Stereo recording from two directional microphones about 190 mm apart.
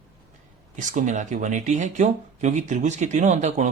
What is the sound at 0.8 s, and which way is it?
Speech, 40° right (ahead or behind).